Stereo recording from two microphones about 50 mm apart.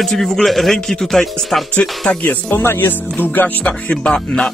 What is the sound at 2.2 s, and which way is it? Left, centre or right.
Speech, left.